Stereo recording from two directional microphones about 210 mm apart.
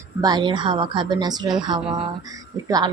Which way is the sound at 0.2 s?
20° right (ahead or behind).